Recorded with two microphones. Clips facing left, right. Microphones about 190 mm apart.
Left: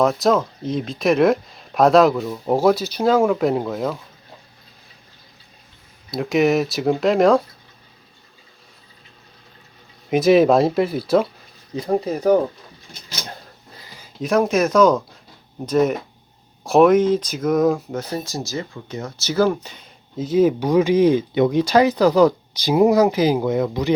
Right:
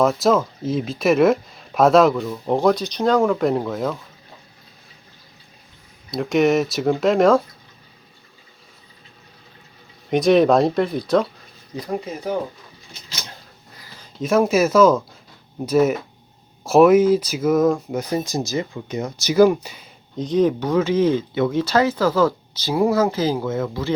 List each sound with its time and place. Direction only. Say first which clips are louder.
0.0 s speech: even; centre (ahead or behind)
6.1 s speech: even; centre (ahead or behind)
10.1 s speech: left 1 dB; 5° left (ahead or behind)
11.8 s speech: left 6 dB; 35° left (ahead or behind)
12.9 s a sound: left 3 dB; 50° left (ahead or behind)
14.0 s speech: right 1 dB; centre (ahead or behind)
17.9 s speech: right 3 dB; 15° right (ahead or behind)
20.1 s speech: left 2 dB; 5° left (ahead or behind)